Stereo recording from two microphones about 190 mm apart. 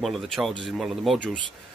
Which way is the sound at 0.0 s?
Centre (ahead or behind).